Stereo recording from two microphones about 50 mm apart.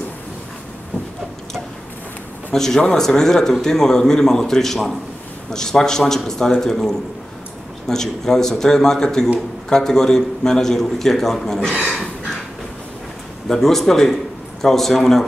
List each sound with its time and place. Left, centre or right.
2.5 s a man's voice: centre
13.5 s a man's voice: centre